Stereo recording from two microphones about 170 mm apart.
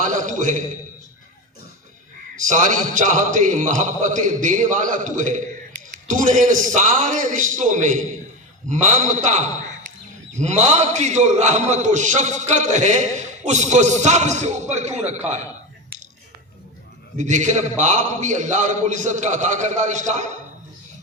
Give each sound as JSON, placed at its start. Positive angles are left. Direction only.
{"t": 0.0, "sound": "a man's voice", "side_deg": -50}
{"t": 2.3, "sound": "a man's voice", "side_deg": -50}
{"t": 17.2, "sound": "a man's voice", "side_deg": -45}